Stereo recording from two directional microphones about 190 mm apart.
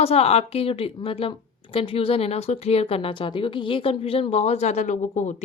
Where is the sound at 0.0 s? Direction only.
35° left (ahead or behind).